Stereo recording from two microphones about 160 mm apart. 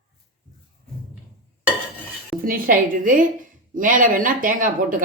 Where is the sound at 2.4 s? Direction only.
65° right (ahead or behind).